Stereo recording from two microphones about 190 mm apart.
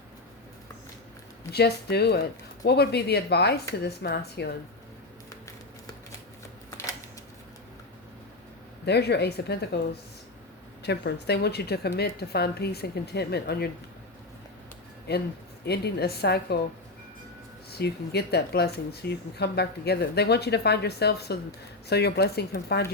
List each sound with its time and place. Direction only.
1.5 s speech: 60° left (ahead or behind)
6.7 s a sound: 15° left (ahead or behind)
8.9 s speech: 60° left (ahead or behind)
10.8 s speech: 60° left (ahead or behind)
15.1 s speech: 60° left (ahead or behind)
17.7 s speech: 60° left (ahead or behind)